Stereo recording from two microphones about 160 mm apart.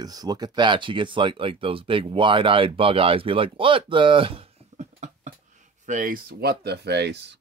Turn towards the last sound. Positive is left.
turn(degrees=-90)